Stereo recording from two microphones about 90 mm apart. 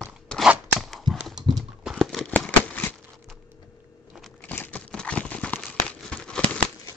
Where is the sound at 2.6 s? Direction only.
15° left (ahead or behind).